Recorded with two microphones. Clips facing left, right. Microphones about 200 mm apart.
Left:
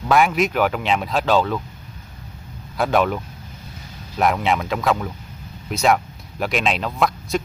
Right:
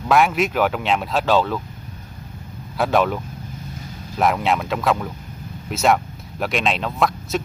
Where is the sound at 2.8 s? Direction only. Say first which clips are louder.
Even; centre (ahead or behind).